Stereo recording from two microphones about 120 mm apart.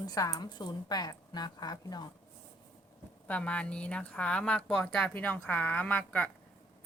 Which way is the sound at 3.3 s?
10° left (ahead or behind).